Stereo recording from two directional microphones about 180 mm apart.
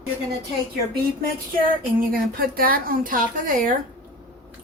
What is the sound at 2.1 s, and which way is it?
Speech, 55° right (ahead or behind).